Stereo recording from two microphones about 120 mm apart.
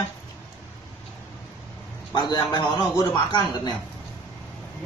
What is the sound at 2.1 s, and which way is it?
A man's voice, 35° left (ahead or behind).